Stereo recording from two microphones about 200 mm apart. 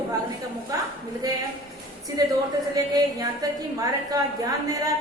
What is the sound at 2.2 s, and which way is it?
A woman's voice, 20° right (ahead or behind).